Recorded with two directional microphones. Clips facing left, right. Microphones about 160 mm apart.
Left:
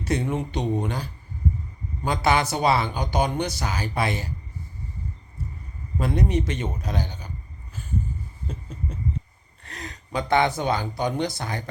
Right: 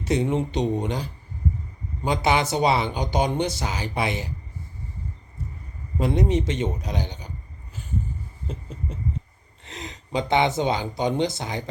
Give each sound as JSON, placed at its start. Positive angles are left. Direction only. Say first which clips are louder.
{"t": 0.0, "sound": "speech", "louder": "right 3 dB", "side_deg": -20}
{"t": 6.0, "sound": "speech", "louder": "right 2 dB", "side_deg": -20}
{"t": 9.6, "sound": "speech", "louder": "right 1 dB", "side_deg": -20}